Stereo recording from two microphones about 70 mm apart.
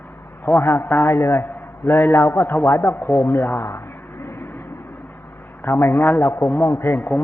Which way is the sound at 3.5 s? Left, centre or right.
Left.